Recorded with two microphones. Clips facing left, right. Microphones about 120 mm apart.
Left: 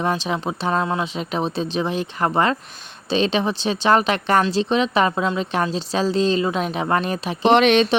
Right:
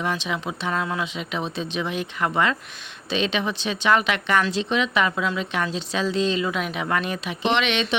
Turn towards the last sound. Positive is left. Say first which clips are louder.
# left 8 dB
turn(degrees=45)  # may be behind; listen again after turning